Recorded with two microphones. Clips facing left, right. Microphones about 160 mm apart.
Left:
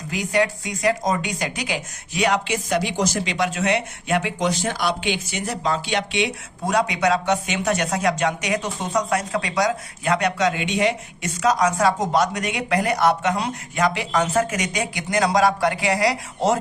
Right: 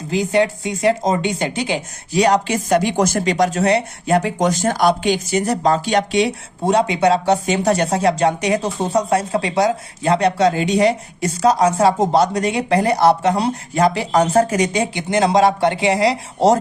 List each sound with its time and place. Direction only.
0.1 s speech: 25° right (ahead or behind)